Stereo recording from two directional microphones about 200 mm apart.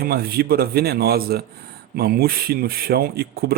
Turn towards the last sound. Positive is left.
turn(degrees=-50)  # may be behind; listen again after turning